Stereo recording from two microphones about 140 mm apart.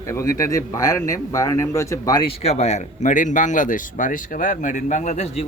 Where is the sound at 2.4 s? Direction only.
50° left (ahead or behind).